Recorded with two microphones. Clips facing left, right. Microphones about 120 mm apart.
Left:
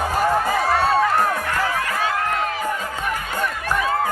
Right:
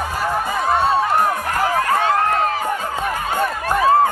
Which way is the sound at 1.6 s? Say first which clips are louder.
Right 5 dB; 40° right (ahead or behind).